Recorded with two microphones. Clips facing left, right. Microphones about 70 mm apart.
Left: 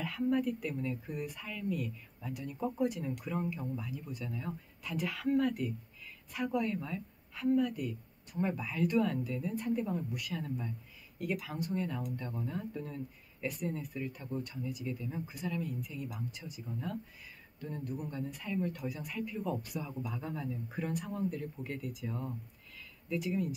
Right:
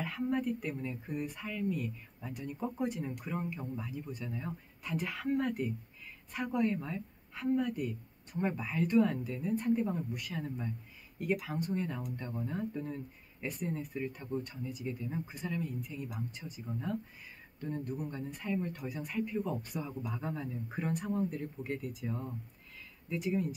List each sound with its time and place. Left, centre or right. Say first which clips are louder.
0.0 s a woman's voice: left 2 dB; right
3.2 s a woman's voice: left 1 dB; right
17.6 s a woman's voice: right 2 dB; right